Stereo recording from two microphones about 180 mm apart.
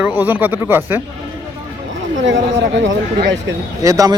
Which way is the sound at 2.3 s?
80° right.